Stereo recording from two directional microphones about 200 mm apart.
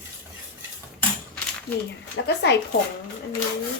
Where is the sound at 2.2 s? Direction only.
55° left (ahead or behind).